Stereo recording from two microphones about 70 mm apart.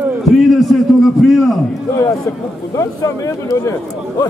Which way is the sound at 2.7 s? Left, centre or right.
Left.